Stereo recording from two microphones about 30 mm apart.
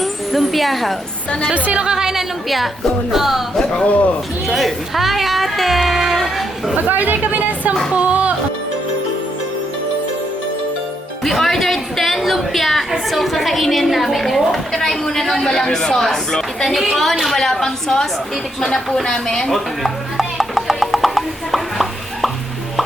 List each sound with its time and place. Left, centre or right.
0.0 s speech: centre
1.7 s speech: right
2.1 s a woman's voice: centre
3.8 s speech: left
4.4 s a woman's voice: centre
6.2 s a sound: centre
6.7 s speech: right
7.9 s music: right
11.2 s music: centre
13.1 s a woman's voice: centre
14.8 s a woman's voice: centre
16.6 s a woman's voice: centre
19.0 s speech: centre
19.5 s music: centre